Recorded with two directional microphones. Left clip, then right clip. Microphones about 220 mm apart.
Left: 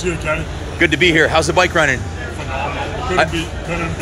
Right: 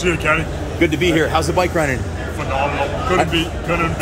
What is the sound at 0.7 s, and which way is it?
Speech, 15° left (ahead or behind).